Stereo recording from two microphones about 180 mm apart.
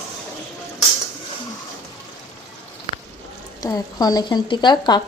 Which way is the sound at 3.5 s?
20° left (ahead or behind).